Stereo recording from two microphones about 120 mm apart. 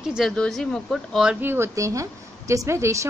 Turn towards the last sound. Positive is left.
turn(degrees=-25)  # may be behind; listen again after turning